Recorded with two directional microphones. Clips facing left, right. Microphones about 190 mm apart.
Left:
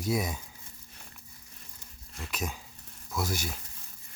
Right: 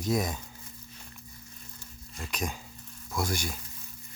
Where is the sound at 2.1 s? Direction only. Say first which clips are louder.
Right 2 dB; 5° left (ahead or behind).